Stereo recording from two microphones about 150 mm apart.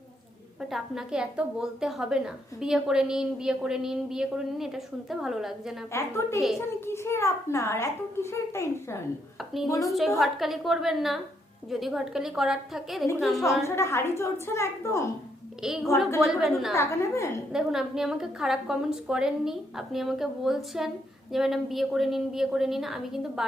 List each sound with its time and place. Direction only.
0.7 s a woman's voice: 5° right (ahead or behind)
5.9 s a woman's voice: 20° left (ahead or behind)
9.4 s a woman's voice: centre (ahead or behind)
9.6 s a woman's voice: 20° left (ahead or behind)
10.2 s a woman's voice: centre (ahead or behind)
13.6 s a woman's voice: 20° left (ahead or behind)
15.6 s a woman's voice: 5° right (ahead or behind)
16.7 s a woman's voice: 20° left (ahead or behind)
17.5 s a woman's voice: 5° right (ahead or behind)